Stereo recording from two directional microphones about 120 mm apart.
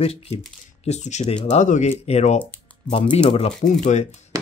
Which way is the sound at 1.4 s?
85° left.